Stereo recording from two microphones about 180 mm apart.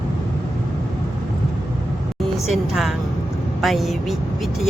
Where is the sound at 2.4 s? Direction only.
Centre (ahead or behind).